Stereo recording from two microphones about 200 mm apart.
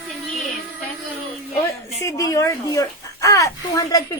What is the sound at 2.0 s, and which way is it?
A child's voice, 15° left (ahead or behind).